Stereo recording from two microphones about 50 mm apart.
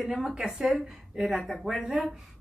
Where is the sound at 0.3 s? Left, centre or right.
Centre.